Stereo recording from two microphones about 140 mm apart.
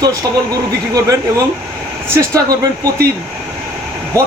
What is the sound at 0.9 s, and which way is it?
A man's voice, 25° right (ahead or behind).